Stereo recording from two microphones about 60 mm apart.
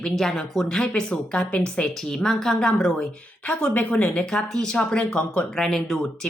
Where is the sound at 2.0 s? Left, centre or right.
Centre.